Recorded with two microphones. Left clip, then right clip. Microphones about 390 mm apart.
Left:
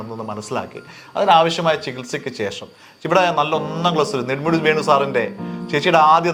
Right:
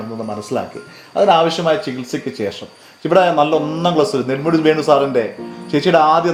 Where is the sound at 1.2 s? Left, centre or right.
Left.